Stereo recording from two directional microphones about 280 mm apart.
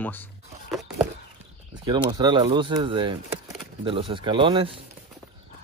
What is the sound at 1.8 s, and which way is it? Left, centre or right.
Speech, centre.